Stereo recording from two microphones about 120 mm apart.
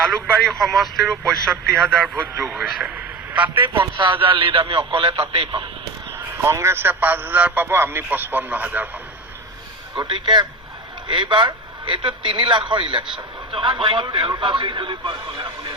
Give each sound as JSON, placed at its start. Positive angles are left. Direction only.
{"t": 0.4, "sound": "a man's voice", "side_deg": 0}
{"t": 3.6, "sound": "a man's voice", "side_deg": -40}
{"t": 6.1, "sound": "a man's voice", "side_deg": -25}
{"t": 10.0, "sound": "a man's voice", "side_deg": -40}